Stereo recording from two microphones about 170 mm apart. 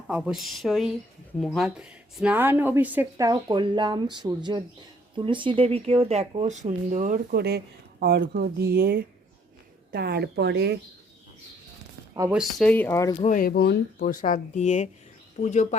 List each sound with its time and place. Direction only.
0.1 s speech: 5° right (ahead or behind); by 7.3 s 50° right (ahead or behind)
7.3 s speech: 70° right (ahead or behind)
12.3 s speech: centre (ahead or behind); by 13.1 s 15° left (ahead or behind)
13.1 s speech: 40° left (ahead or behind)
13.4 s speech: 70° left (ahead or behind); by 15.6 s 45° left (ahead or behind)